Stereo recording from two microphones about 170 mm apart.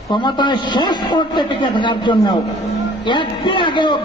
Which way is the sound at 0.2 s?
25° left (ahead or behind).